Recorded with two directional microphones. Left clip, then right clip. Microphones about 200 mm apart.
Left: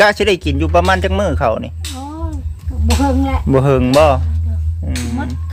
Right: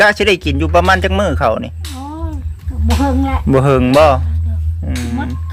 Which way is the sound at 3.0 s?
5° left (ahead or behind).